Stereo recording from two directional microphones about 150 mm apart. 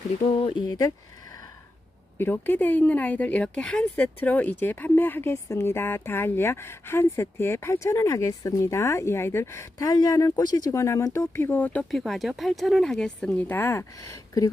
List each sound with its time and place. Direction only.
0.2 s speech: 35° left (ahead or behind)
2.1 s speech: 15° left (ahead or behind)